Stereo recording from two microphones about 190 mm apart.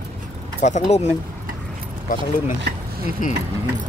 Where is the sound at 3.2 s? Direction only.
45° left (ahead or behind).